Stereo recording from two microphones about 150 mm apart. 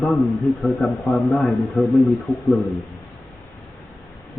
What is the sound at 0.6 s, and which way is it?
A man's voice, 5° left (ahead or behind).